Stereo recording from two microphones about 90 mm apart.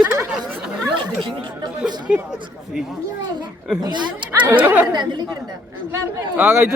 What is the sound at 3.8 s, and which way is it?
Speech, 55° right (ahead or behind).